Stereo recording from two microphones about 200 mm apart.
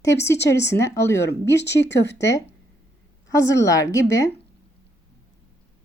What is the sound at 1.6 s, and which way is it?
Speech, 60° left (ahead or behind).